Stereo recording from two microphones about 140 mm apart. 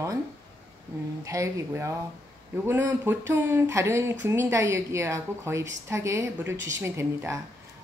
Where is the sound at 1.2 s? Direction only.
20° right (ahead or behind).